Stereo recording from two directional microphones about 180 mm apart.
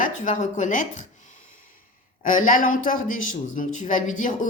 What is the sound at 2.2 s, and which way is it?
Speech, 45° left (ahead or behind).